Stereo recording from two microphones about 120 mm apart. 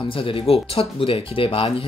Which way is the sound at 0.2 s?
50° left (ahead or behind).